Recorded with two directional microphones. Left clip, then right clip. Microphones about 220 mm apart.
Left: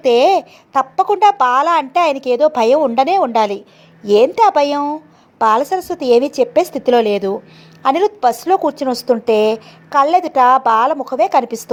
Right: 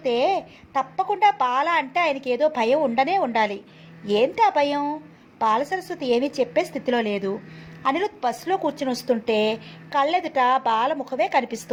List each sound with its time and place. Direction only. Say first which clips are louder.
0.0 s a woman's voice: left 10 dB; 45° left (ahead or behind); by 11.6 s 25° left (ahead or behind)